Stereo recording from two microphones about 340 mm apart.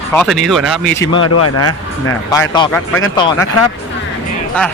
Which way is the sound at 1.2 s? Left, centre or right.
Left.